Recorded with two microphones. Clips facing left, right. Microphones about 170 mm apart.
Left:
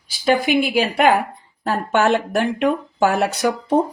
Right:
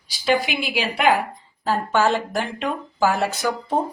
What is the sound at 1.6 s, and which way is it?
A woman's voice, 60° left (ahead or behind).